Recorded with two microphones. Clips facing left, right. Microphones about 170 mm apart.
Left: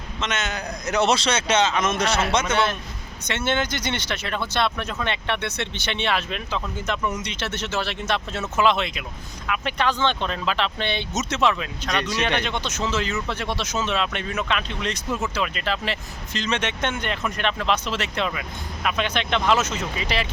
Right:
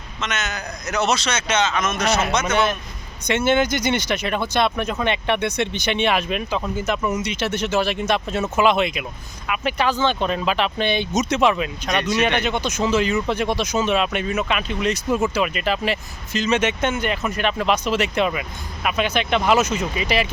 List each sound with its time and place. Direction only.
0.2 s speech: 30° left (ahead or behind)
2.5 s speech: 15° right (ahead or behind)